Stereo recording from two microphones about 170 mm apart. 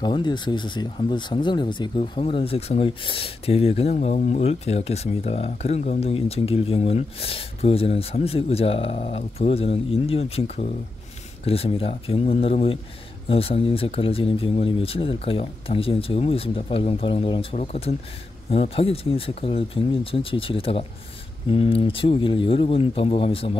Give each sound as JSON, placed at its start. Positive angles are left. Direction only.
{"t": 0.0, "sound": "speech", "side_deg": 25}